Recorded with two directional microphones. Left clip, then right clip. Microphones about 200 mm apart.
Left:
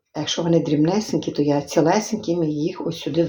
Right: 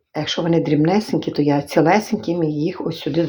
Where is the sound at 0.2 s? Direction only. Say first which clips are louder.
Right 1 dB; 30° right (ahead or behind).